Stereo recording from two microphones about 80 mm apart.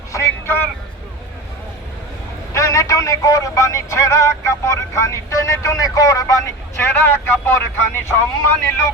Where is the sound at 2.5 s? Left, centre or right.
Left.